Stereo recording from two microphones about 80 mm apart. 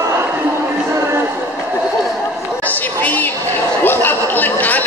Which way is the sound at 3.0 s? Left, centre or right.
Left.